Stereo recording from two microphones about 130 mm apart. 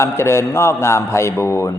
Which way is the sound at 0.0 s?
20° left (ahead or behind).